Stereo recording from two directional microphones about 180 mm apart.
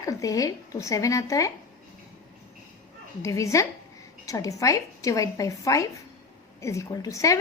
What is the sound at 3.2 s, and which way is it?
A woman's voice, 15° left (ahead or behind).